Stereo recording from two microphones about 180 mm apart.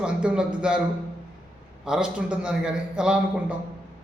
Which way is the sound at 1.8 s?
5° right (ahead or behind).